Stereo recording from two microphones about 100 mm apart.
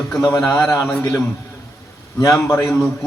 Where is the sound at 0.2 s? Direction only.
35° left (ahead or behind).